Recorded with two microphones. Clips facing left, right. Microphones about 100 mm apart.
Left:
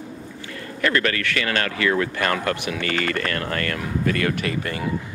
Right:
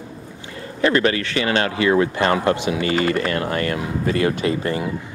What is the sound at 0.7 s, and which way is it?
Speech, 25° right (ahead or behind).